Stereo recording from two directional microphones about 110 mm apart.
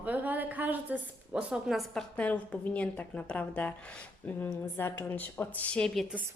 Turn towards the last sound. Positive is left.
turn(degrees=5)  # may be behind; listen again after turning